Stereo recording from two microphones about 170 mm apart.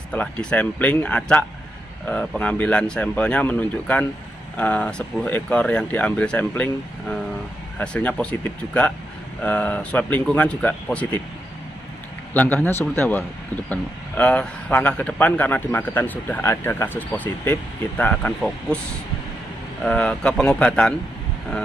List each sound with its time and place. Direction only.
0.1 s speech: 5° left (ahead or behind)
12.4 s speech: 10° left (ahead or behind)
19.8 s speech: 5° left (ahead or behind)